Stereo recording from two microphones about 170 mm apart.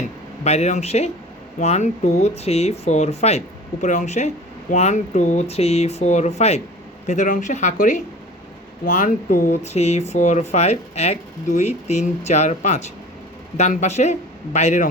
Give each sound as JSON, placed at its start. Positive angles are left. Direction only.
{"t": 0.0, "sound": "a man's voice", "side_deg": 40}